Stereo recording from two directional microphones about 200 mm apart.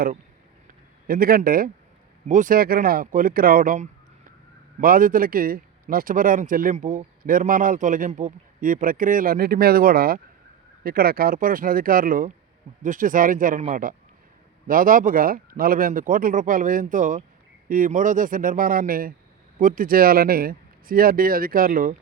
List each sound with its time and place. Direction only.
1.0 s a man's voice: 50° right (ahead or behind)